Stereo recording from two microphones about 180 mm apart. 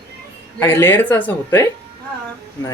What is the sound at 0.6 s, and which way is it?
Speech, 10° left (ahead or behind).